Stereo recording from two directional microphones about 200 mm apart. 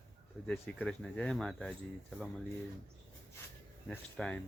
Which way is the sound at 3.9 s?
5° left (ahead or behind).